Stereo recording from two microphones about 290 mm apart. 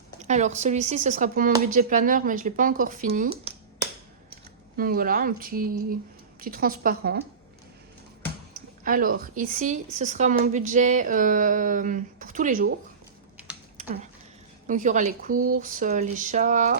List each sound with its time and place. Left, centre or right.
0.2 s a woman's voice: right
4.8 s a woman's voice: right
8.8 s a woman's voice: right
13.7 s a sound: right
14.7 s a woman's voice: right
15.4 s a sound: right
15.6 s a woman's voice: right